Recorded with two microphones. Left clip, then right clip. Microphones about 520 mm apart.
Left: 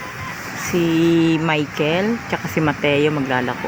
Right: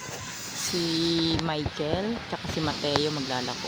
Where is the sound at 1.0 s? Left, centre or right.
Right.